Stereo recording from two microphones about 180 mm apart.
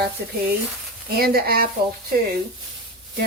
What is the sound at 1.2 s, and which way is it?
Speech, 60° right (ahead or behind).